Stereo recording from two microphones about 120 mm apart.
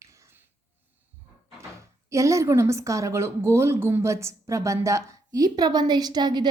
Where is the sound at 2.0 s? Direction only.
25° right (ahead or behind).